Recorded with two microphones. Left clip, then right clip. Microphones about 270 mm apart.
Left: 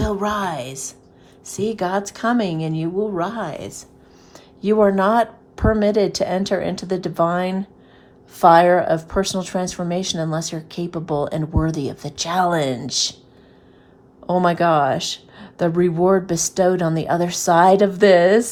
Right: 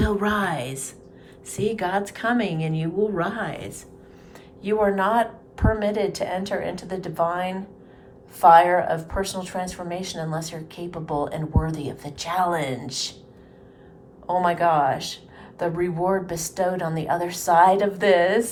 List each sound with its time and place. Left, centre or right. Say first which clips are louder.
0.0 s a woman's voice: left 1 dB; centre; by 13.1 s left
14.4 s speech: left 3 dB; left